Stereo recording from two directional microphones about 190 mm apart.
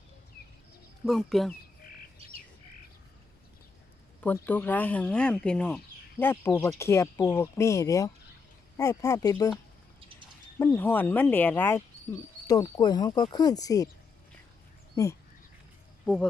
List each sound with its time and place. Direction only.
1.0 s speech: centre (ahead or behind)
4.2 s speech: 10° left (ahead or behind)
10.6 s speech: 10° left (ahead or behind)
15.0 s speech: 15° left (ahead or behind)